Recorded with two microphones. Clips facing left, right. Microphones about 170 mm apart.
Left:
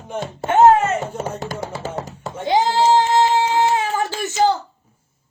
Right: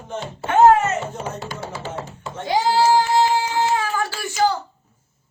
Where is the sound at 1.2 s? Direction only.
45° left (ahead or behind).